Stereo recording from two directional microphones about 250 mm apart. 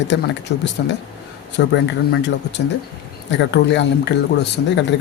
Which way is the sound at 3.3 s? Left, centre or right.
Left.